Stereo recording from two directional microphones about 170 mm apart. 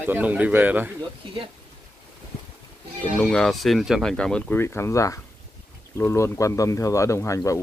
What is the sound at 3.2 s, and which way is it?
Speech, 5° left (ahead or behind).